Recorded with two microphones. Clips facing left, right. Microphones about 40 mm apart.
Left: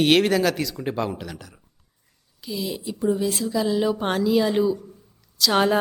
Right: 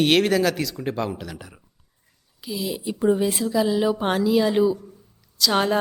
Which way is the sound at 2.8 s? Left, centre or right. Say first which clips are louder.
Right 3 dB; right.